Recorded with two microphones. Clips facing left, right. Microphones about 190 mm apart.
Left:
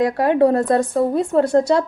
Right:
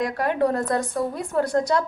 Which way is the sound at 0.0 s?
25° left (ahead or behind).